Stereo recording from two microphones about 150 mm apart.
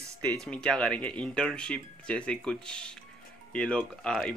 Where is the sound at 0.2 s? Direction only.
5° left (ahead or behind).